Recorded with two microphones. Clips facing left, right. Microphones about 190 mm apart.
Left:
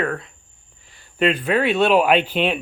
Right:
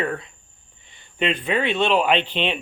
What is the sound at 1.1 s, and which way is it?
Speech, centre (ahead or behind).